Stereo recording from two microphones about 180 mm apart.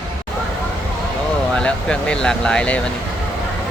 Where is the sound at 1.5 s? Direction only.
5° left (ahead or behind).